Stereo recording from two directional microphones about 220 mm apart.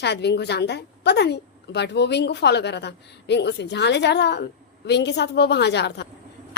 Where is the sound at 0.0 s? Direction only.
50° left (ahead or behind).